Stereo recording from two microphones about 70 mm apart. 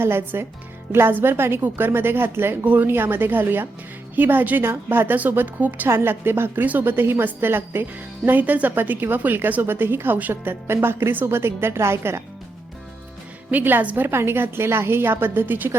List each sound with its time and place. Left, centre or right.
0.0 s a woman's voice: right
13.5 s speech: right